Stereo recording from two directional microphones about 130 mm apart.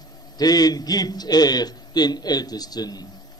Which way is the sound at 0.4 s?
30° left (ahead or behind).